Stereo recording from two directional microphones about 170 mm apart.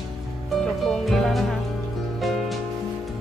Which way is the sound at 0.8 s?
5° left (ahead or behind).